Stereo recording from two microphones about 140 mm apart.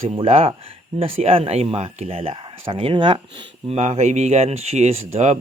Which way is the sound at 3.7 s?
55° right (ahead or behind).